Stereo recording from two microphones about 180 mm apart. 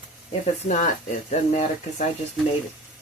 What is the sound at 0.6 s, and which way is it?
Speech, 45° left (ahead or behind).